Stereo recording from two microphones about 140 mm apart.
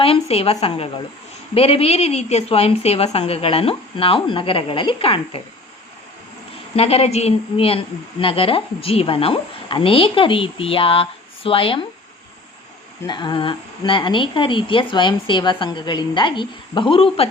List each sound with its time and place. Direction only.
0.0 s a woman's voice: 45° left (ahead or behind)
6.7 s a woman's voice: 45° left (ahead or behind)
13.1 s a woman's voice: 35° left (ahead or behind)